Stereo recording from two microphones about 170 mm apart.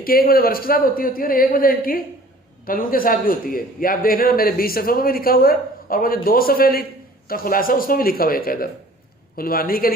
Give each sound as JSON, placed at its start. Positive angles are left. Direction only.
{"t": 0.0, "sound": "a man's voice", "side_deg": 60}